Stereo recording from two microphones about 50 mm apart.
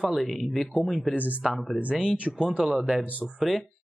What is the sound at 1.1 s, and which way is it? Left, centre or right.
Speech, right.